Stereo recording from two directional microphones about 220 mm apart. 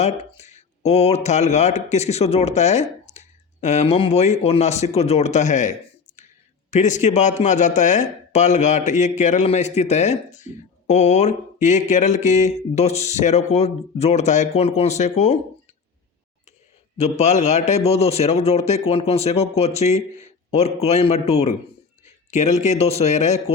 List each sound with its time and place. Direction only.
0.0 s speech: 30° left (ahead or behind)
17.0 s a man's voice: 30° left (ahead or behind)